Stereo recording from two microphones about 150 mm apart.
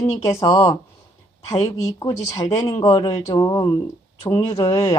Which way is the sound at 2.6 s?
25° left (ahead or behind).